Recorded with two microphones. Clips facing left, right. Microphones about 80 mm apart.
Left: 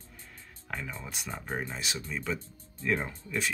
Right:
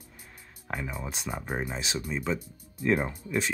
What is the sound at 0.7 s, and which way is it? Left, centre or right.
Speech, centre.